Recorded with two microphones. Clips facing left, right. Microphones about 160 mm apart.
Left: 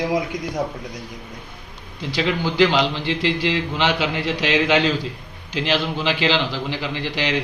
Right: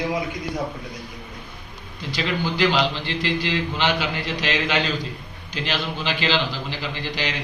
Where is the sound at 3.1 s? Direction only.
80° left.